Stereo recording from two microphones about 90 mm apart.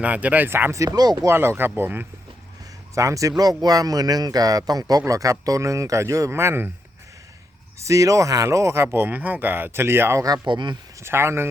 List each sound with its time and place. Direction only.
0.0 s speech: 15° right (ahead or behind)
0.9 s speech: 45° right (ahead or behind)
1.3 s speech: 25° right (ahead or behind)
2.9 s a man's voice: 35° right (ahead or behind)
7.8 s speech: 35° right (ahead or behind)
10.4 s speech: 55° right (ahead or behind)
11.0 s speech: 30° right (ahead or behind)